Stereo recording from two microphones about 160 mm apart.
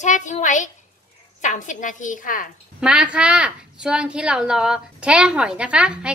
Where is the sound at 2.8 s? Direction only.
5° right (ahead or behind).